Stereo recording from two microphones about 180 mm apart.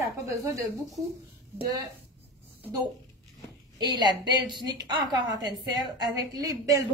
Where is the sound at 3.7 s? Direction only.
25° right (ahead or behind).